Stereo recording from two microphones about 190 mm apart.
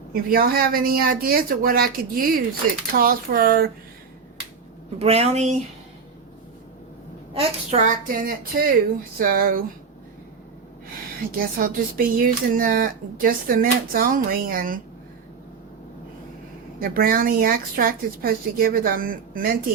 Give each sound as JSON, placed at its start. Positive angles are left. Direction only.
{"t": 0.1, "sound": "speech", "side_deg": -50}
{"t": 4.9, "sound": "speech", "side_deg": -30}
{"t": 7.3, "sound": "speech", "side_deg": -35}
{"t": 11.3, "sound": "speech", "side_deg": -50}
{"t": 16.8, "sound": "speech", "side_deg": -50}